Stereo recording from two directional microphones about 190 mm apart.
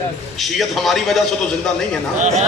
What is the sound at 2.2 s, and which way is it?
Speech, 35° right (ahead or behind).